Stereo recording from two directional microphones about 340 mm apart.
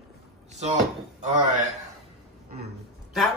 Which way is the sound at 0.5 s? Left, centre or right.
Centre.